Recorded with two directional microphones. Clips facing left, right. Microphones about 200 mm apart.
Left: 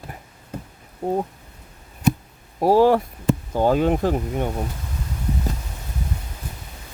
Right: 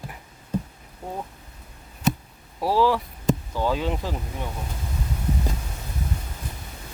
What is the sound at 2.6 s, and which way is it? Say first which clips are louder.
Speech: left 6 dB; 50° left (ahead or behind).